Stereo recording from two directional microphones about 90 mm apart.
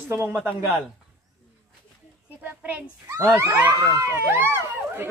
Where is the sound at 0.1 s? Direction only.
25° right (ahead or behind).